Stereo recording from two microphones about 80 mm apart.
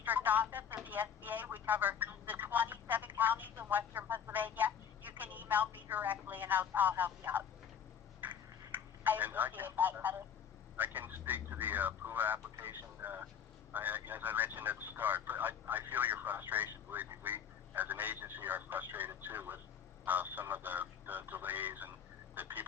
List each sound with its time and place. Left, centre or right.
0.0 s speech: right
8.2 s telephone: right
10.8 s speech: right
22.4 s fowl: right